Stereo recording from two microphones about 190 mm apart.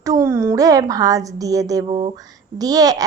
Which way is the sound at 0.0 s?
15° right (ahead or behind).